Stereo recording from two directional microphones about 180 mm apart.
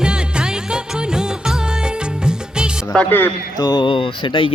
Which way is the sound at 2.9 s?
10° left (ahead or behind).